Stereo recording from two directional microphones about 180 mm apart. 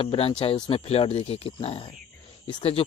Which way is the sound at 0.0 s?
30° left (ahead or behind).